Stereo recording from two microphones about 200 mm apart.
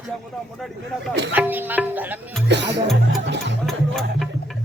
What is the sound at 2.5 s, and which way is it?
Music, 60° right (ahead or behind).